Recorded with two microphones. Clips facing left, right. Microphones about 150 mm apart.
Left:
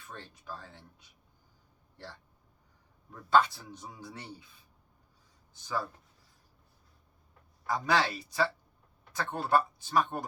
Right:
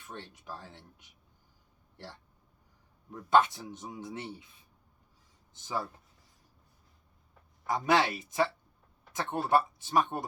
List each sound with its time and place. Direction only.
0.1 s a man's voice: 20° right (ahead or behind)
3.1 s a man's voice: 20° right (ahead or behind)
7.7 s a man's voice: 20° right (ahead or behind)